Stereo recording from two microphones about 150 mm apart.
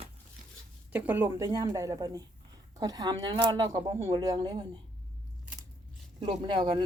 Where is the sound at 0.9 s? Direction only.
10° right (ahead or behind).